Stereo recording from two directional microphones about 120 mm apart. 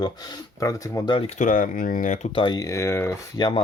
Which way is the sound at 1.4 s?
90° left.